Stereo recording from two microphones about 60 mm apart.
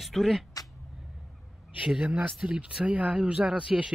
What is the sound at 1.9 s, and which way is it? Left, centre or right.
Speech, right.